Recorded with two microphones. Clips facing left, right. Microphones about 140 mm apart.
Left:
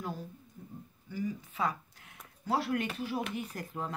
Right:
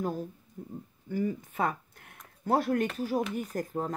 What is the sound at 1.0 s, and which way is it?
Speech, 55° right (ahead or behind).